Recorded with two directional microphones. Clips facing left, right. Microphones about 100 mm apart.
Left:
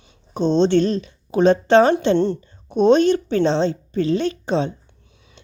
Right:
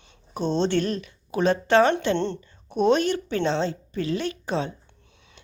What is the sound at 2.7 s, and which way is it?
A woman's voice, 30° left (ahead or behind).